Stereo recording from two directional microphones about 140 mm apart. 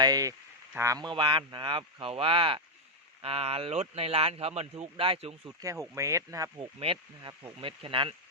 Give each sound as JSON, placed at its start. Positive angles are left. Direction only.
{"t": 0.0, "sound": "speech", "side_deg": -25}
{"t": 1.0, "sound": "speech", "side_deg": -35}
{"t": 5.9, "sound": "speech", "side_deg": -20}
{"t": 6.7, "sound": "speech", "side_deg": -40}